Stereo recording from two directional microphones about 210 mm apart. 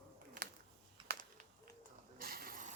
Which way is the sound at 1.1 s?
40° right (ahead or behind).